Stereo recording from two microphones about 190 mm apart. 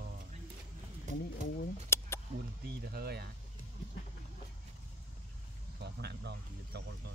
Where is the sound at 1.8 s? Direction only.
15° left (ahead or behind).